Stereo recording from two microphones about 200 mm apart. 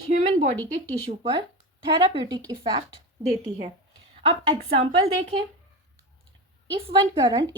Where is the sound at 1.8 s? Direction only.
20° right (ahead or behind).